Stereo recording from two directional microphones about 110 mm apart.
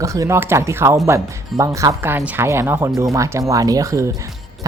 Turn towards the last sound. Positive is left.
turn(degrees=-30)  # may be behind; listen again after turning